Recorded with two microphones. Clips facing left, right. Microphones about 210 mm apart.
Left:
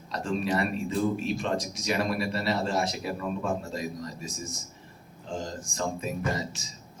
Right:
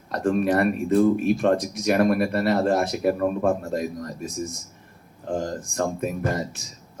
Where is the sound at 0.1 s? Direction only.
55° right (ahead or behind).